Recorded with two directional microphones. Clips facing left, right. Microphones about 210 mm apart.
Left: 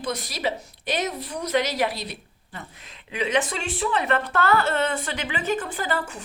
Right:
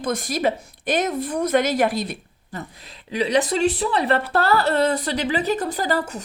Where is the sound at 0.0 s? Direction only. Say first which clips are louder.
Right 6 dB; 50° right (ahead or behind).